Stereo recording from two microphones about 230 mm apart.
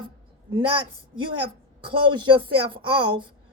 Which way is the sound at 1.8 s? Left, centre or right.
Right.